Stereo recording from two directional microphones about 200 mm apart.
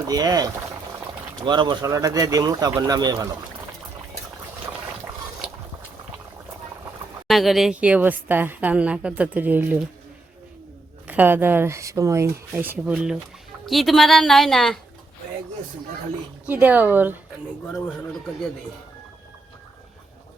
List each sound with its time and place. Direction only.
0.1 s speech: 20° right (ahead or behind)
7.3 s a woman's voice: centre (ahead or behind)
11.0 s a woman's voice: 10° right (ahead or behind)
16.5 s a woman's voice: 10° right (ahead or behind)